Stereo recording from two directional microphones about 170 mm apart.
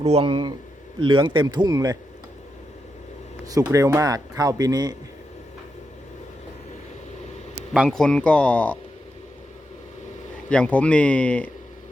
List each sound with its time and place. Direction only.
0.0 s speech: 35° right (ahead or behind)
3.4 s speech: 20° right (ahead or behind)
7.7 s speech: centre (ahead or behind)
10.5 s speech: 10° left (ahead or behind)